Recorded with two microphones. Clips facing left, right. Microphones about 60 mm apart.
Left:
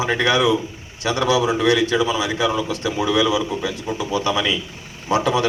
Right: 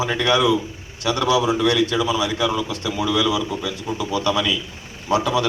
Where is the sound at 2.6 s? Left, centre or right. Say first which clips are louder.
Left 2 dB; left.